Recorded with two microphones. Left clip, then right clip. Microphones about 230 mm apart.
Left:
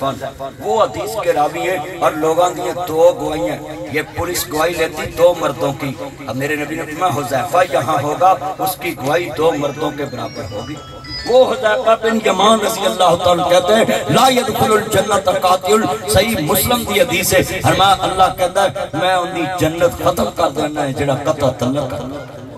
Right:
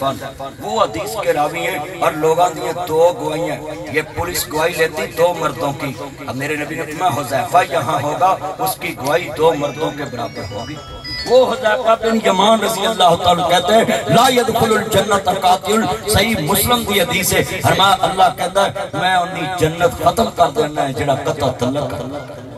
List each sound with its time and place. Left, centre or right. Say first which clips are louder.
0.7 s a man's voice: even; right
7.0 s a man's voice: even; right
11.3 s a man's voice: left 1 dB; right